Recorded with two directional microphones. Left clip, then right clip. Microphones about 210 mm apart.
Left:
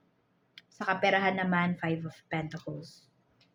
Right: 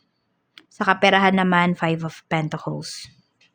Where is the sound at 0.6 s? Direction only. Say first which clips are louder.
Right 11 dB; 45° right (ahead or behind).